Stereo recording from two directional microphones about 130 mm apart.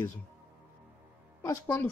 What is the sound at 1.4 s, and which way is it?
Speech, 20° left (ahead or behind).